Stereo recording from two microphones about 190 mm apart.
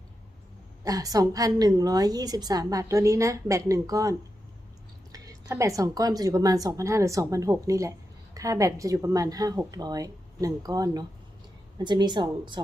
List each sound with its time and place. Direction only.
0.9 s a woman's voice: 20° right (ahead or behind)
5.1 s a woman's voice: 20° right (ahead or behind)